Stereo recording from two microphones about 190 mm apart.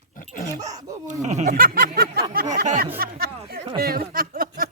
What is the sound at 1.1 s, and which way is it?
Speech, 40° right (ahead or behind).